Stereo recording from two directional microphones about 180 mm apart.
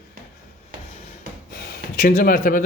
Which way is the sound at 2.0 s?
60° left (ahead or behind).